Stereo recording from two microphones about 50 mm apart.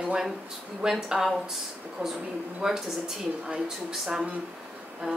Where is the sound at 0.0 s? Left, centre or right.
Centre.